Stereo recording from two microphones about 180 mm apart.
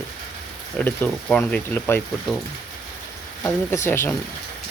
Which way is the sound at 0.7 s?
10° left (ahead or behind).